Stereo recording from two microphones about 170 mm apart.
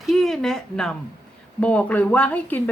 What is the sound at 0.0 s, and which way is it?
Speech, centre (ahead or behind).